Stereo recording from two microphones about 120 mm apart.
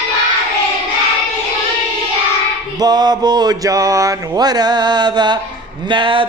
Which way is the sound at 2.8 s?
35° right (ahead or behind).